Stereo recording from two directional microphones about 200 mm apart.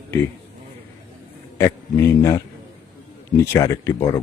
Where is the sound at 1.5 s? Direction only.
15° left (ahead or behind).